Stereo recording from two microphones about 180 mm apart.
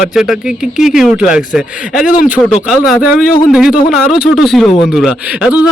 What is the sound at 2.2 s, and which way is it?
Speech, 5° right (ahead or behind).